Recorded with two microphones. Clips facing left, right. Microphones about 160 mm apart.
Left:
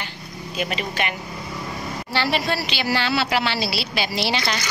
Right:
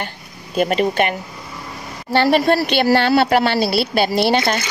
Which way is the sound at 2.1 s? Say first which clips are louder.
Right 9 dB; 50° right (ahead or behind).